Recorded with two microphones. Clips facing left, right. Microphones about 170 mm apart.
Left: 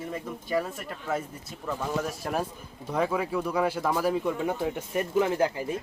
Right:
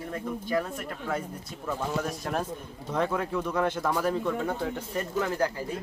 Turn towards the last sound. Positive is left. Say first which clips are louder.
# left 2 dB
turn(degrees=20)  # may be behind; listen again after turning